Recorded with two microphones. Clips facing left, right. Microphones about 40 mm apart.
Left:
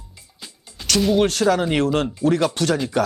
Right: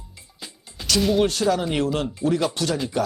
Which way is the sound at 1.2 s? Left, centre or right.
Left.